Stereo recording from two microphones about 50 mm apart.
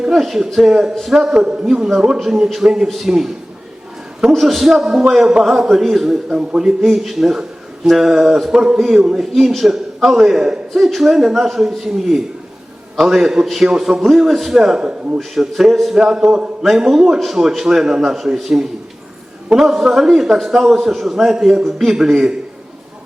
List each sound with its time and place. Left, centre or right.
0.0 s a man's voice: centre
6.8 s a man's voice: centre
9.3 s a man's voice: centre
16.0 s a man's voice: centre
16.6 s a man's voice: centre
18.5 s a man's voice: right
19.5 s a man's voice: centre